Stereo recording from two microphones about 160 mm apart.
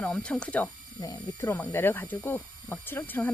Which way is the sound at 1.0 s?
20° left (ahead or behind).